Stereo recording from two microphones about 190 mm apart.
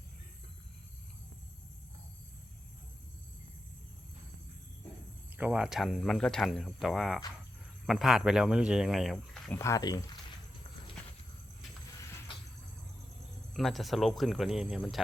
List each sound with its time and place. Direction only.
5.4 s speech: 5° right (ahead or behind)
9.6 s speech: 15° left (ahead or behind)
13.5 s speech: centre (ahead or behind)